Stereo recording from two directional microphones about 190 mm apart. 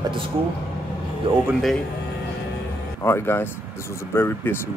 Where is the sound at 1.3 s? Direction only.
25° right (ahead or behind).